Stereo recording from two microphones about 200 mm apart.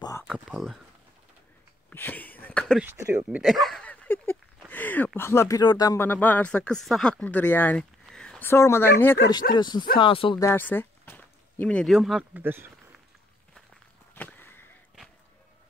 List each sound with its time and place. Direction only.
0.2 s speech: centre (ahead or behind)
1.9 s a sound: 10° left (ahead or behind)
2.8 s speech: 10° right (ahead or behind)
3.3 s speech: centre (ahead or behind); by 10.4 s 25° left (ahead or behind)
10.4 s speech: 10° left (ahead or behind); by 12.7 s 10° right (ahead or behind)
14.1 s a sound: 10° left (ahead or behind)